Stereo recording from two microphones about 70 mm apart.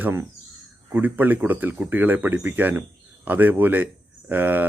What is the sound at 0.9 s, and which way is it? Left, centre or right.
Speech, right.